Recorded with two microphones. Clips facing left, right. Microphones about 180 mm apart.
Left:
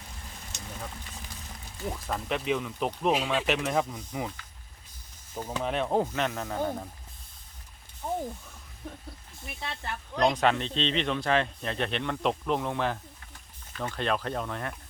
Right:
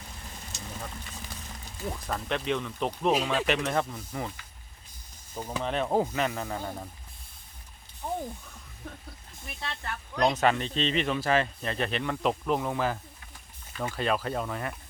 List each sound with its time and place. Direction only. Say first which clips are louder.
1.9 s speech: even; centre (ahead or behind)
5.3 s speech: even; 5° left (ahead or behind)
9.5 s speech: even; 15° left (ahead or behind)
10.2 s speech: even; centre (ahead or behind)